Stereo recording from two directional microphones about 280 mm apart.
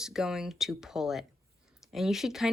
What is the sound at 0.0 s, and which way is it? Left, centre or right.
Speech, centre.